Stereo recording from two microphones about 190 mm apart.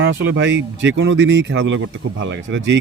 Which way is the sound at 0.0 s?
75° right (ahead or behind).